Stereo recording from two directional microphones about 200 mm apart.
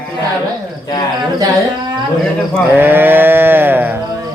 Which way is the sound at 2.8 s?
10° right (ahead or behind).